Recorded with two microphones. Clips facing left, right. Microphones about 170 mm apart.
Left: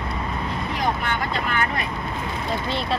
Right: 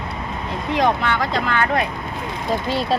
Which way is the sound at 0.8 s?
90° right.